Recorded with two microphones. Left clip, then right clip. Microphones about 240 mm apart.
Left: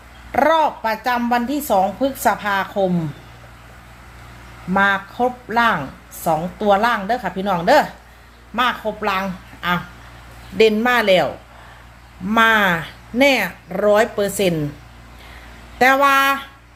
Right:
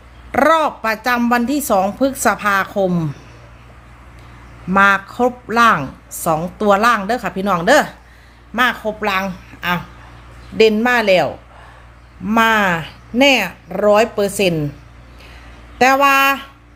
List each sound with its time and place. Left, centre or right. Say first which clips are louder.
0.3 s a woman's voice: right 2 dB; right
4.7 s a woman's voice: right 4 dB; right
12.3 s speech: right 1 dB; centre
15.8 s speech: right 2 dB; centre